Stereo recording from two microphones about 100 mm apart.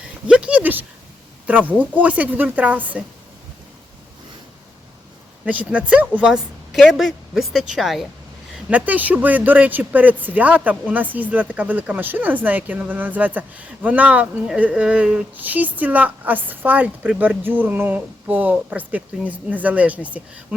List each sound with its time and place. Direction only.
0.3 s speech: 10° right (ahead or behind)
5.5 s speech: 15° right (ahead or behind)
6.7 s a woman's voice: centre (ahead or behind)
8.7 s speech: 15° right (ahead or behind)